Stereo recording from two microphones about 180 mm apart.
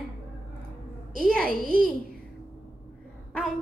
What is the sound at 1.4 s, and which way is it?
Speech, 50° right (ahead or behind).